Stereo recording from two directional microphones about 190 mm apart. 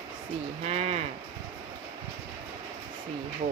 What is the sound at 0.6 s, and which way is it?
Speech, 35° right (ahead or behind).